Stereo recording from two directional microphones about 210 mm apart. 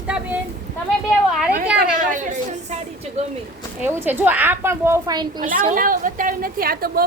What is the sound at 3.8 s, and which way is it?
A woman's voice, 10° right (ahead or behind).